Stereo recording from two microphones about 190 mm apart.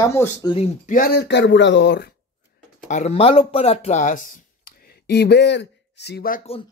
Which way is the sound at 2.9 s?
35° left (ahead or behind).